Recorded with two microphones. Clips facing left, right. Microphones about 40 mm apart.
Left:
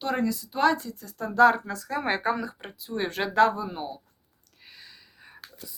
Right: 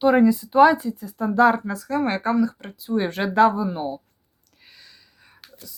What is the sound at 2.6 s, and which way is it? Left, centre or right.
Speech, centre.